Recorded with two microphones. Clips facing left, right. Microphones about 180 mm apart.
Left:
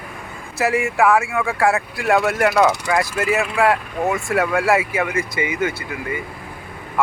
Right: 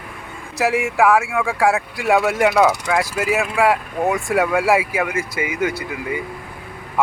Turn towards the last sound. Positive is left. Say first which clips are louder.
# right 2 dB
turn(degrees=-10)  # may be behind; listen again after turning